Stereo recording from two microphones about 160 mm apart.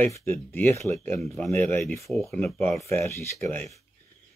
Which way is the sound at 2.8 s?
15° left (ahead or behind).